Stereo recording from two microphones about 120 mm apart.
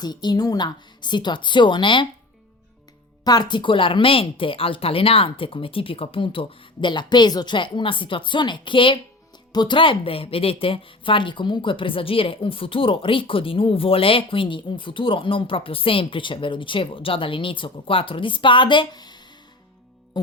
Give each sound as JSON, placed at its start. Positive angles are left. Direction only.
{"t": 0.0, "sound": "a woman's voice", "side_deg": 35}
{"t": 3.2, "sound": "a woman's voice", "side_deg": 40}
{"t": 20.1, "sound": "music", "side_deg": 35}